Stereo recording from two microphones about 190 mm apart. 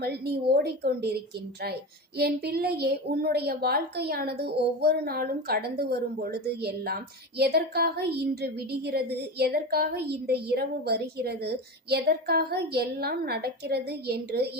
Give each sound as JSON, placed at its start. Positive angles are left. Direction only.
{"t": 0.0, "sound": "a woman's voice", "side_deg": -60}